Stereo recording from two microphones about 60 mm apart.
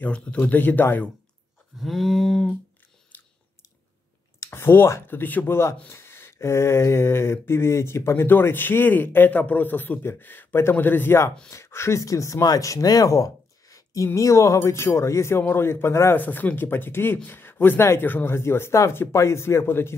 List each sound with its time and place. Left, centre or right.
0.0 s speech: centre
1.8 s a sound: centre
3.1 s biting: left
4.5 s speech: left
5.0 s speech: left
5.9 s a sound: left
10.0 s speech: left
11.5 s speech: left
12.0 s speech: left
14.0 s a sound: left
16.2 s speech: left
18.3 s a sound: left